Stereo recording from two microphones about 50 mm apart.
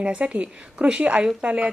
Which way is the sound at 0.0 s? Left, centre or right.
Right.